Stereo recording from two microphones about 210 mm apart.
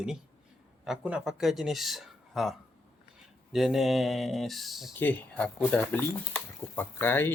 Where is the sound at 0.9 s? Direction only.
5° right (ahead or behind).